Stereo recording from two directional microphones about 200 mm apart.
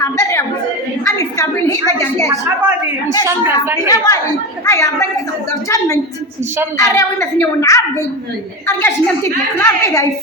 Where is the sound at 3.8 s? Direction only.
20° left (ahead or behind).